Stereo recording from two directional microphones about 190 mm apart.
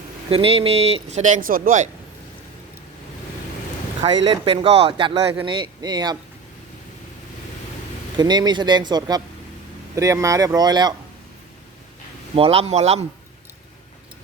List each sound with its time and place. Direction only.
0.3 s speech: 30° right (ahead or behind); by 1.8 s 45° right (ahead or behind)
4.0 s speech: 25° right (ahead or behind)
8.1 s speech: 20° right (ahead or behind)
12.3 s speech: 30° right (ahead or behind)